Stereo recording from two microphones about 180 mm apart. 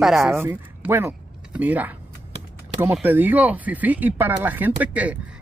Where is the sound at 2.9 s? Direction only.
10° right (ahead or behind).